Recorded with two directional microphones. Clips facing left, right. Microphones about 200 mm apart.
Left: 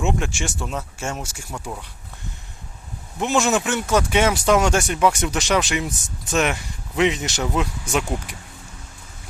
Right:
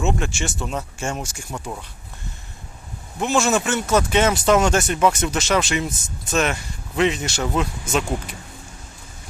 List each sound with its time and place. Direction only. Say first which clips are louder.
0.0 s speech: even; 10° left (ahead or behind); by 1.8 s 5° right (ahead or behind)
3.2 s speech: even; 15° left (ahead or behind)